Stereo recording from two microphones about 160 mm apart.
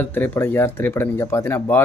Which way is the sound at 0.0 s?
10° left (ahead or behind).